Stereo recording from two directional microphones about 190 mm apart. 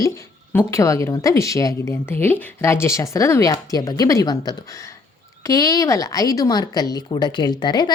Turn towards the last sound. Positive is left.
turn(degrees=25)  # may be behind; listen again after turning